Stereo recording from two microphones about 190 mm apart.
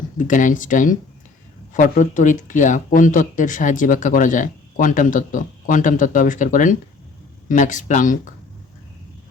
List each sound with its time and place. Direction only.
0.2 s speech: 40° left (ahead or behind)